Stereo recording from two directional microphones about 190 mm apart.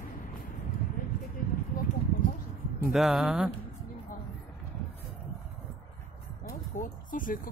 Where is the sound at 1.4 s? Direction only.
45° left (ahead or behind).